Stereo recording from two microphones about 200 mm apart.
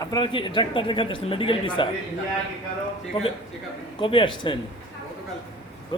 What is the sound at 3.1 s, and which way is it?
Speech, 25° left (ahead or behind).